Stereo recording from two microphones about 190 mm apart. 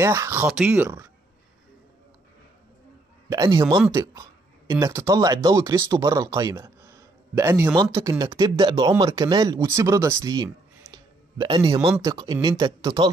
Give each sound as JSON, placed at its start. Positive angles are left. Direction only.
{"t": 0.0, "sound": "speech", "side_deg": -15}
{"t": 3.3, "sound": "speech", "side_deg": -20}
{"t": 3.6, "sound": "speech", "side_deg": 0}
{"t": 3.9, "sound": "speech", "side_deg": -15}